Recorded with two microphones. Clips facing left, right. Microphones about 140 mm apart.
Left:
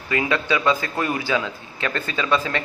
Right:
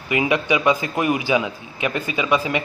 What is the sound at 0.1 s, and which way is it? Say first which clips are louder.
A man's voice: right 2 dB; 15° right (ahead or behind).